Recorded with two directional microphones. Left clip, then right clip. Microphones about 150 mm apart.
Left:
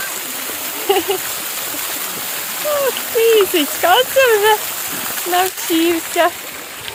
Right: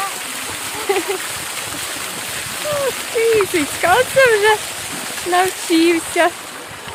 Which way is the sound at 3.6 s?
Centre (ahead or behind).